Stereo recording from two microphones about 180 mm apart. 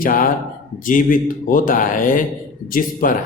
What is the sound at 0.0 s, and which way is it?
Speech, 50° left (ahead or behind).